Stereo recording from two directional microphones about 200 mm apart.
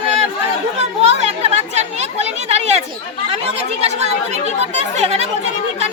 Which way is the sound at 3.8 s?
30° right (ahead or behind).